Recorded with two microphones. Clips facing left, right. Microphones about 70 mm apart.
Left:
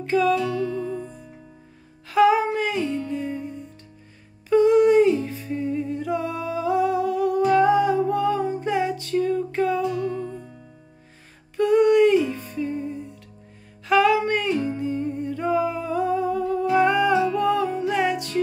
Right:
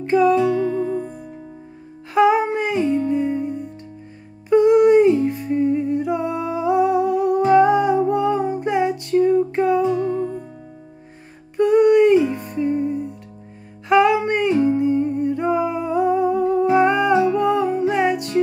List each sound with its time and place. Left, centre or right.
0.0 s music: right
1.0 s music: right
2.1 s music: right
4.5 s humming: centre
11.5 s music: right
13.8 s humming: right